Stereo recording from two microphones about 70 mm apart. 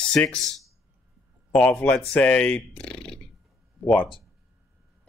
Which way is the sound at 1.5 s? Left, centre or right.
Left.